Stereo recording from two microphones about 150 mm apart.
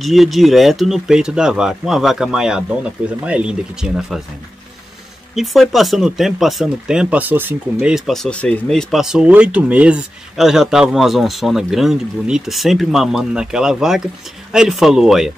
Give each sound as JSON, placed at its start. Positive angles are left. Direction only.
{"t": 0.0, "sound": "speech", "side_deg": 0}
{"t": 5.3, "sound": "speech", "side_deg": 0}
{"t": 7.9, "sound": "speech", "side_deg": 0}